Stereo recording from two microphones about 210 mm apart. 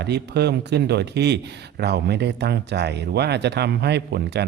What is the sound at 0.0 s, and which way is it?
Speech, 55° right (ahead or behind).